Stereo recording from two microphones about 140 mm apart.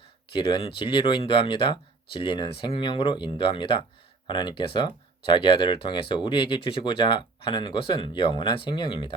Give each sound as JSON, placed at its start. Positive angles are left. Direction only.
{"t": 0.3, "sound": "speech", "side_deg": 35}